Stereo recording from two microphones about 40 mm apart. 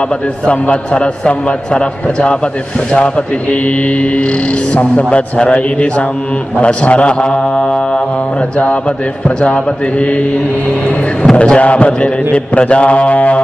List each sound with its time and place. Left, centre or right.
0.5 s a man's voice: left
4.7 s mantra: left
6.6 s a man's voice: left
9.4 s mantra: left
11.3 s mantra: left